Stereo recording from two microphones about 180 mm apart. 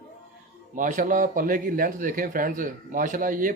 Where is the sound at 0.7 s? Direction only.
45° right (ahead or behind).